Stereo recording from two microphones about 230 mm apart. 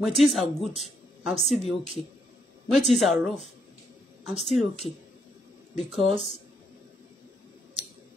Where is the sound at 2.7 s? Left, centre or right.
Centre.